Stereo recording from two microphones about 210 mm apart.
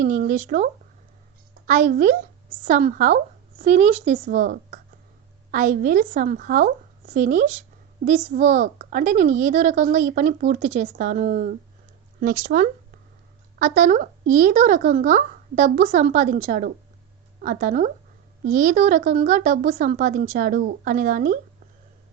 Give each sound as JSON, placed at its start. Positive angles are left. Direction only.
{"t": 0.0, "sound": "speech", "side_deg": -40}